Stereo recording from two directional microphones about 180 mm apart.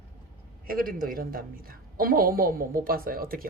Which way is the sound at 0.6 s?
50° right (ahead or behind).